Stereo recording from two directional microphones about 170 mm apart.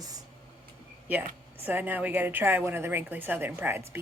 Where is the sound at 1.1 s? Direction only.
10° right (ahead or behind).